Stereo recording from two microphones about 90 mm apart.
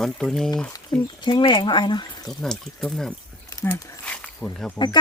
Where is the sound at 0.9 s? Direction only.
35° left (ahead or behind).